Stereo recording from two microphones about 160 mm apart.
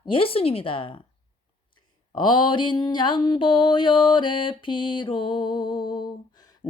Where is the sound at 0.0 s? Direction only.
35° left (ahead or behind).